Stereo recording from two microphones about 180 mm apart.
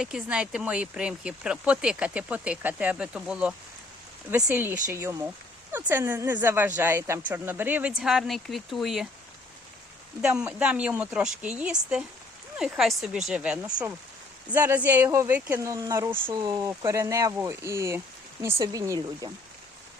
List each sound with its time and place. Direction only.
0.0 s speech: 5° right (ahead or behind)
10.2 s speech: 5° right (ahead or behind)
16.4 s speech: 25° right (ahead or behind)